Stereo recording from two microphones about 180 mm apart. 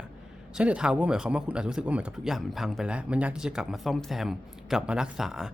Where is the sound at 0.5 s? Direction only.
5° right (ahead or behind).